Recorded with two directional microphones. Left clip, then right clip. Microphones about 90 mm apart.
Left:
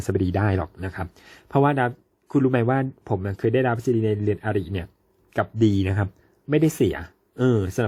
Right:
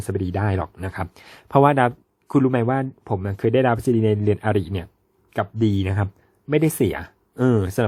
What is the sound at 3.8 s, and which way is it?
Speech, 45° right (ahead or behind).